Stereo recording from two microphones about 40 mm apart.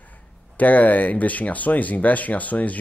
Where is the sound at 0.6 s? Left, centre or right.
Left.